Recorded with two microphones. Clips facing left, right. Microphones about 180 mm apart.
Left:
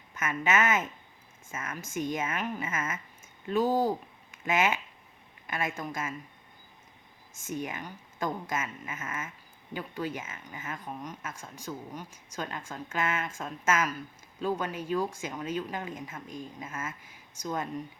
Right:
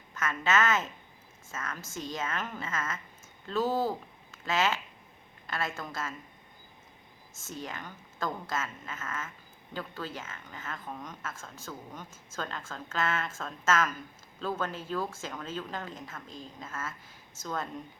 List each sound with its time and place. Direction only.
0.1 s a woman's voice: 15° left (ahead or behind)
7.3 s speech: 15° left (ahead or behind)